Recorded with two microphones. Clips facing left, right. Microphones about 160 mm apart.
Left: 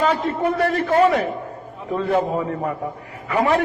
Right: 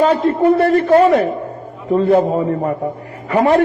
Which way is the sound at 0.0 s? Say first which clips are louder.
Right 7 dB; 40° right (ahead or behind).